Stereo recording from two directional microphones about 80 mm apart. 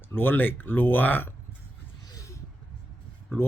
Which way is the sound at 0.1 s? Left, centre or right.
Left.